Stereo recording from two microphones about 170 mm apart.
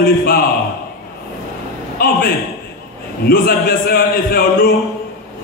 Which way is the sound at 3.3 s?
60° left (ahead or behind).